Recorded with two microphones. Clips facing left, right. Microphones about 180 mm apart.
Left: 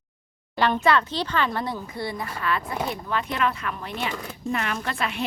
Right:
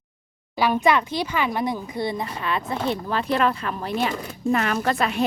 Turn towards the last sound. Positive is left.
turn(degrees=-40)  # may be behind; listen again after turning